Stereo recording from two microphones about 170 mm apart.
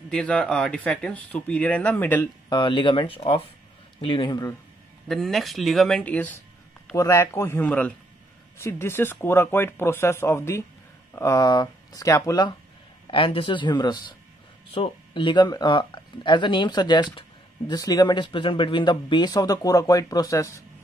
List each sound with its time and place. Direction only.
0.1 s speech: 5° left (ahead or behind)
2.5 s speech: 30° left (ahead or behind)
5.0 s speech: centre (ahead or behind); by 20.6 s 15° left (ahead or behind)